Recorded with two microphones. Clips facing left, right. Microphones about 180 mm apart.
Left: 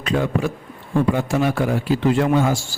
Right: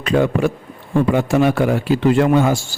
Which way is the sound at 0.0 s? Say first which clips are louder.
Right 5 dB; 65° right (ahead or behind).